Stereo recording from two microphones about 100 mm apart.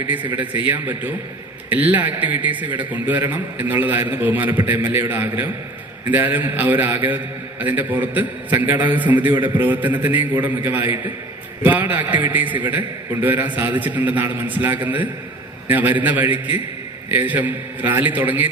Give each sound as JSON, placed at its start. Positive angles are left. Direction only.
{"t": 0.3, "sound": "a man's voice", "side_deg": -20}